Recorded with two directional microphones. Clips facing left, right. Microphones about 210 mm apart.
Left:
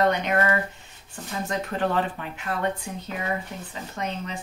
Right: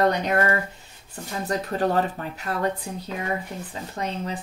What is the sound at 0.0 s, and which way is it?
Speech, 35° right (ahead or behind).